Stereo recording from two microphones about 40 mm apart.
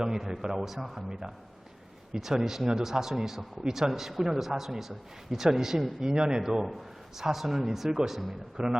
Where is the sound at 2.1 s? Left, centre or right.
Centre.